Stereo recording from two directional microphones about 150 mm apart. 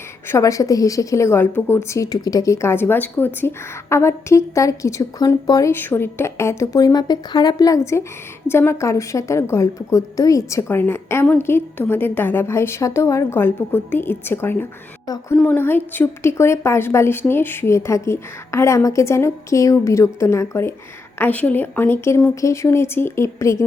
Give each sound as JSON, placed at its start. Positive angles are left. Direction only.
{"t": 0.3, "sound": "a woman's voice", "side_deg": 20}
{"t": 15.0, "sound": "a woman's voice", "side_deg": 25}
{"t": 15.4, "sound": "a woman's voice", "side_deg": 15}